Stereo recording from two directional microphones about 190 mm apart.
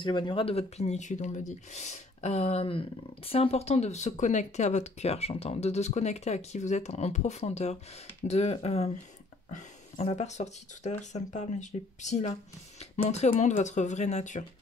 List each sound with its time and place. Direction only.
0.0 s speech: 25° left (ahead or behind)